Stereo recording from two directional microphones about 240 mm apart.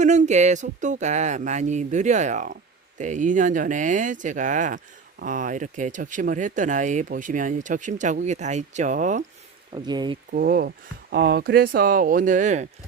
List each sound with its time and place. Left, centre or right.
0.0 s a sound: right
3.0 s speech: right
9.7 s speech: centre
10.3 s speech: right